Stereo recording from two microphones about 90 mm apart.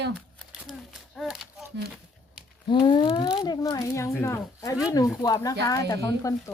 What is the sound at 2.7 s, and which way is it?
Speech, 65° left (ahead or behind).